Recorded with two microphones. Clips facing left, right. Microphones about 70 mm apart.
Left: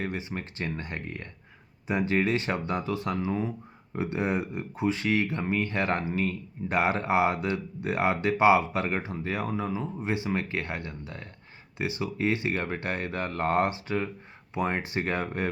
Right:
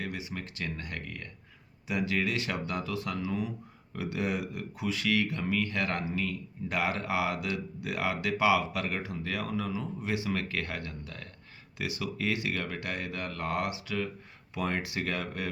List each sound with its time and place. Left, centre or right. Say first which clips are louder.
0.0 s speech: left 4 dB; left